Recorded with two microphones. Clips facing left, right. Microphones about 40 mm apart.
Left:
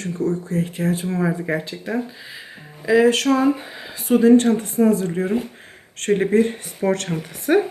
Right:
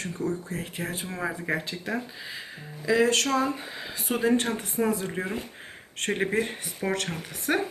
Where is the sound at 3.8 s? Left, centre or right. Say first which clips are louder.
Left 11 dB; centre.